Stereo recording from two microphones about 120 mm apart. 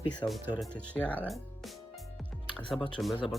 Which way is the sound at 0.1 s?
5° left (ahead or behind).